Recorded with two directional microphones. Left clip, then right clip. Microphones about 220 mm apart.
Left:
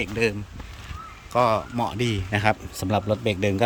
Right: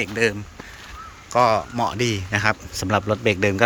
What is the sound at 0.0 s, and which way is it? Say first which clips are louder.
Speech: right 3 dB; 5° left (ahead or behind).